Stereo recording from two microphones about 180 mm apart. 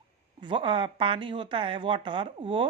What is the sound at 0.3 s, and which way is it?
Speech, 25° right (ahead or behind).